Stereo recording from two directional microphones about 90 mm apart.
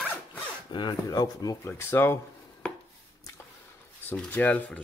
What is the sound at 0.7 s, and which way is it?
Speech, 55° left (ahead or behind).